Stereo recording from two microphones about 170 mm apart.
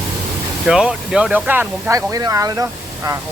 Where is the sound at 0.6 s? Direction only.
5° right (ahead or behind).